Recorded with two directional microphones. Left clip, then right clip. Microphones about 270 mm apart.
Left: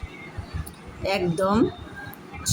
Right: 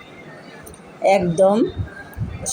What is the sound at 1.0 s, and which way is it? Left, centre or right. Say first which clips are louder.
Speech: right 9 dB; centre.